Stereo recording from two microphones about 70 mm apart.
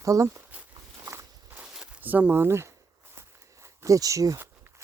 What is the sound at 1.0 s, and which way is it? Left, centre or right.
Walk, right.